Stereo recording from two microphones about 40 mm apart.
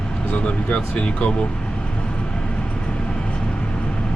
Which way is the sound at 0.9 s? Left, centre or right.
Left.